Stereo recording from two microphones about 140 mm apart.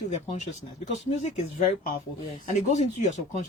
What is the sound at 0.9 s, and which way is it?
Speech, 55° left (ahead or behind).